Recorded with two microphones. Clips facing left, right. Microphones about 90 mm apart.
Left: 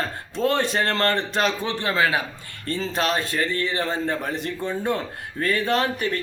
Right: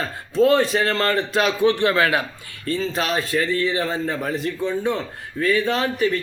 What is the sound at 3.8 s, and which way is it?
A man's voice, 5° right (ahead or behind).